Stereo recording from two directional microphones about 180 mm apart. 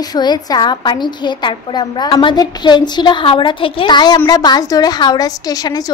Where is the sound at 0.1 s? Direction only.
25° left (ahead or behind).